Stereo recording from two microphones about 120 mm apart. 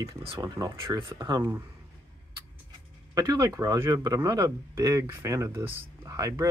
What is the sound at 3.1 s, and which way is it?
Speech, 35° right (ahead or behind).